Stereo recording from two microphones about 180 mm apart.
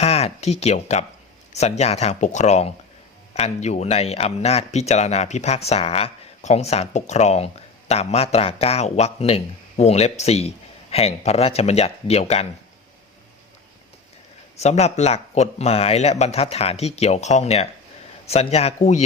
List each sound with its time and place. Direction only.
0.0 s speech: 35° left (ahead or behind)
14.5 s speech: 35° left (ahead or behind)